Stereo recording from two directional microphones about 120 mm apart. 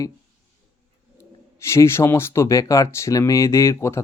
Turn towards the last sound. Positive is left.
turn(degrees=25)  # may be behind; listen again after turning